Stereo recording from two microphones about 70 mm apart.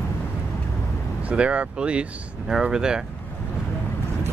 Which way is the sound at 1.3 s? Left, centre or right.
Centre.